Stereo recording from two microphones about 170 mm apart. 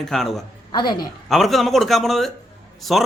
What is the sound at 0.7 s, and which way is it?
Speech, 25° left (ahead or behind).